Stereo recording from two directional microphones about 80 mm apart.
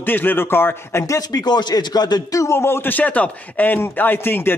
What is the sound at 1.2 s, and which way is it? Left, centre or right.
Speech, left.